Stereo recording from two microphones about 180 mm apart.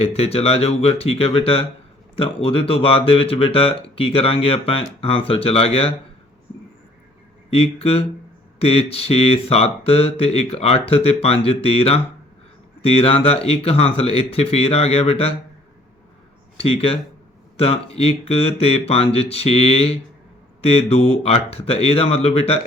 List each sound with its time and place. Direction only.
0.0 s speech: 35° left (ahead or behind)
7.5 s speech: 35° left (ahead or behind)
16.6 s speech: 30° left (ahead or behind)